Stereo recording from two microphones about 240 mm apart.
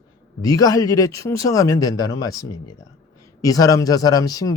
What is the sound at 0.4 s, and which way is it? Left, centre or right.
A man's voice, centre.